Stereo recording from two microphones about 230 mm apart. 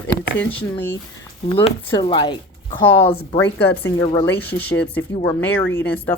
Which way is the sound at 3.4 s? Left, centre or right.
Left.